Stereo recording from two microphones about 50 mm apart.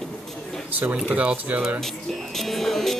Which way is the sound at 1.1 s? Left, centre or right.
Right.